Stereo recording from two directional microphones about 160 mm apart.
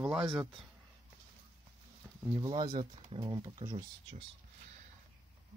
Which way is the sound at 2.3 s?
25° right (ahead or behind).